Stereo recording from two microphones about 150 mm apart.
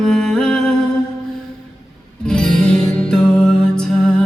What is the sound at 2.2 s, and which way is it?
Music, 5° left (ahead or behind).